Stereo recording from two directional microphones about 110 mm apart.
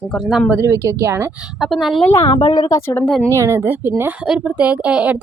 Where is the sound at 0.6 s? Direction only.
30° right (ahead or behind).